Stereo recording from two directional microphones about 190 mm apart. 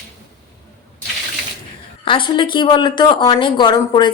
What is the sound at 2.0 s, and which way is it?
Speech, 25° left (ahead or behind).